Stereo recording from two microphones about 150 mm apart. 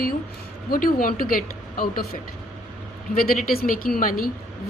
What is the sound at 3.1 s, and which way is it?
A woman's voice, 70° left (ahead or behind).